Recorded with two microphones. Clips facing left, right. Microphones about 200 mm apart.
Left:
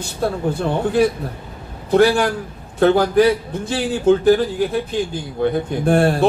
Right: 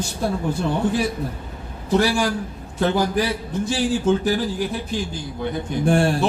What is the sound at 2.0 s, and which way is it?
A man's voice, 60° left (ahead or behind).